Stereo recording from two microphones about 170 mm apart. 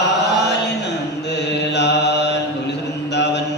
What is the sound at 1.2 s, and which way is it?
Mantra, 90° left.